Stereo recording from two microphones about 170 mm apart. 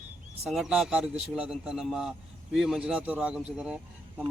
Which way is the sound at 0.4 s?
5° right (ahead or behind).